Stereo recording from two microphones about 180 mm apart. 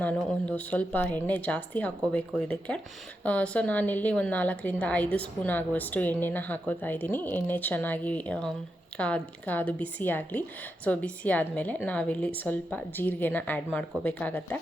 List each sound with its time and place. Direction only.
0.4 s a woman's voice: 5° left (ahead or behind)